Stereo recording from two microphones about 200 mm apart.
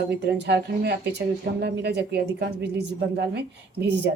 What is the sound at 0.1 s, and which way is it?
A woman's voice, 60° right (ahead or behind).